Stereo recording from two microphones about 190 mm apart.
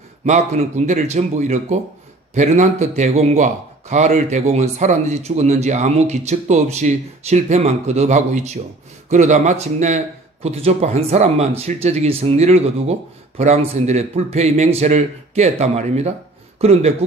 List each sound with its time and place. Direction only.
0.2 s speech: 40° right (ahead or behind)